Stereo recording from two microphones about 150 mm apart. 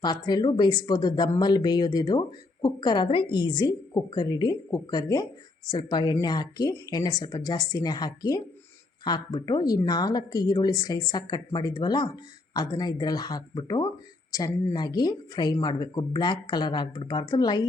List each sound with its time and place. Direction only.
0.0 s speech: 30° left (ahead or behind)